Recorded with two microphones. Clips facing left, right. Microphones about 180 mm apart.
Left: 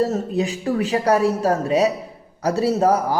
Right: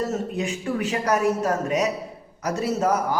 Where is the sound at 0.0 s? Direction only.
35° left (ahead or behind).